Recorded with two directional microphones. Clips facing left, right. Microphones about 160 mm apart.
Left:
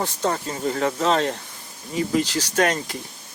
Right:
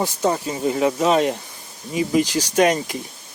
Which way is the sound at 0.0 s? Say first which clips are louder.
Right 3 dB; 10° right (ahead or behind).